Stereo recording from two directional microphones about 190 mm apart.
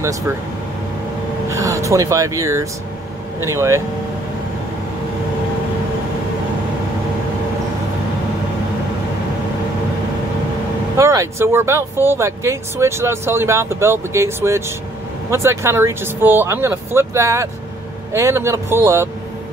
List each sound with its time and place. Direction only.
1.5 s speech: 15° right (ahead or behind)
11.0 s speech: 15° right (ahead or behind)